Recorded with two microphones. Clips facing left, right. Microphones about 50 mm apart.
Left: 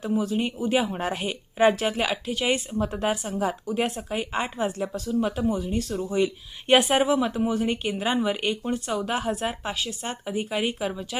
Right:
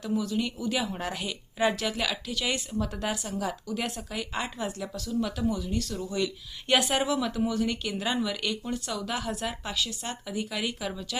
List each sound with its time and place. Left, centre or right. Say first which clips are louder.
0.0 s a woman's voice: left 4 dB; left